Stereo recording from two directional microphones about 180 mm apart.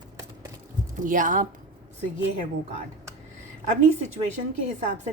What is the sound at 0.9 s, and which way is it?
Speech, 45° right (ahead or behind).